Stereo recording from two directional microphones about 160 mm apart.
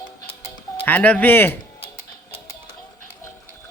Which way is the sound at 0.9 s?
10° left (ahead or behind).